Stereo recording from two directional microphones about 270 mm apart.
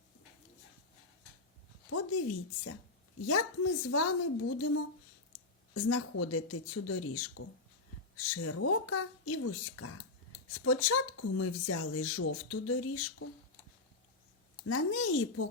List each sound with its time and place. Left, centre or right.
1.9 s speech: left
8.3 s speech: left
10.5 s speech: left
14.7 s speech: left